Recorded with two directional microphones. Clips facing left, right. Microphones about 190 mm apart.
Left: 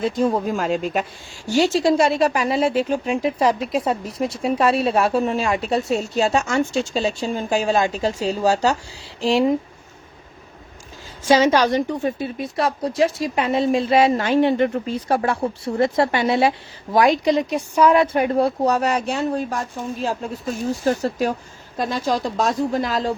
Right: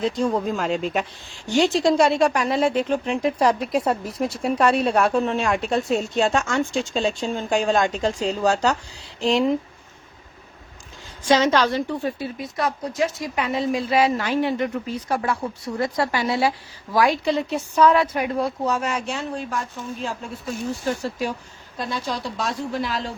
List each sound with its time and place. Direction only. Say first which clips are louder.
0.3 s speech: left 2 dB; 10° left (ahead or behind)
11.2 s a woman's voice: left 3 dB; 10° left (ahead or behind)
18.0 s speech: left 5 dB; 30° left (ahead or behind)